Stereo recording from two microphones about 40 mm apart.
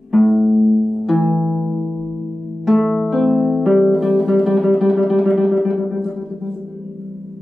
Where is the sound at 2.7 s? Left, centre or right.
Centre.